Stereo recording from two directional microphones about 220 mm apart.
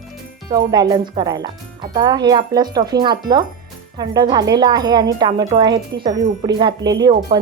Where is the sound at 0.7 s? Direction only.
20° right (ahead or behind).